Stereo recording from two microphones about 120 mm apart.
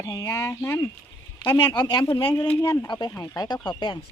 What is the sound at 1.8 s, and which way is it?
Speech, 40° left (ahead or behind).